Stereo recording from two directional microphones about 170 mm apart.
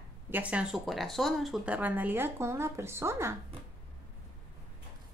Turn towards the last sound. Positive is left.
turn(degrees=-15)  # may be behind; listen again after turning